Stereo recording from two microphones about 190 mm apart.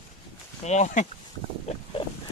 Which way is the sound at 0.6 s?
40° left (ahead or behind).